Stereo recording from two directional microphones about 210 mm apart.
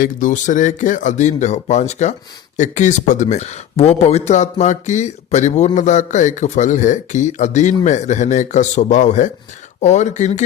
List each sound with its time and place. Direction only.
0.0 s speech: 40° left (ahead or behind)